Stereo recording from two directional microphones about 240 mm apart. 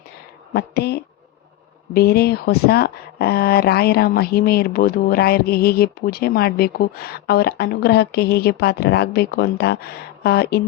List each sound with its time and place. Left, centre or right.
0.5 s speech: left